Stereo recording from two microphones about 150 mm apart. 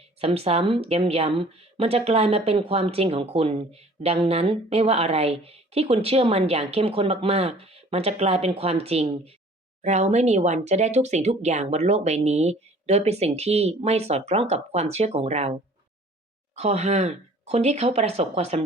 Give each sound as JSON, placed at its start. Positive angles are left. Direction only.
{"t": 0.2, "sound": "a woman's voice", "side_deg": -40}
{"t": 16.6, "sound": "speech", "side_deg": -45}